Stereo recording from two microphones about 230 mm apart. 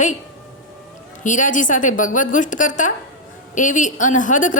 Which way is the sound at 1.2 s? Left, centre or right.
Left.